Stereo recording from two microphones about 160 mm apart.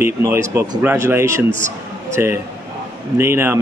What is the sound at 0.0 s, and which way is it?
A man's voice, 15° right (ahead or behind).